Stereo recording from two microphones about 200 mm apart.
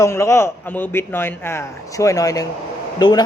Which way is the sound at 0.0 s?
15° left (ahead or behind).